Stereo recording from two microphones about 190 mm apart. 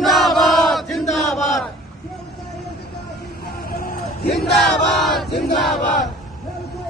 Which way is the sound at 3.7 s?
50° left (ahead or behind).